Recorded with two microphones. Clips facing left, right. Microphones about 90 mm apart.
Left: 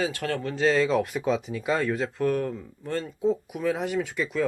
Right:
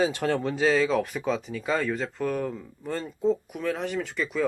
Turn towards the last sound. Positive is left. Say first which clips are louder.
# left 1 dB
turn(degrees=0)  # may be behind; listen again after turning